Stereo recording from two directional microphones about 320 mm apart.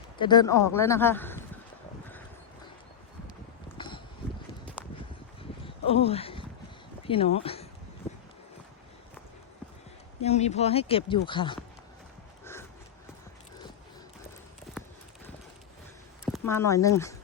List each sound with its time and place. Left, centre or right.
0.2 s speech: centre
3.8 s a sound: centre
5.4 s a sound: centre
7.0 s speech: centre
10.2 s speech: centre
16.5 s speech: centre